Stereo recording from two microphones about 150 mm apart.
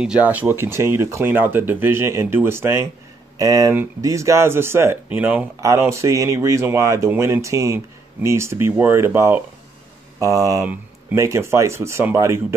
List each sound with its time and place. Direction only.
0.0 s speech: 10° right (ahead or behind)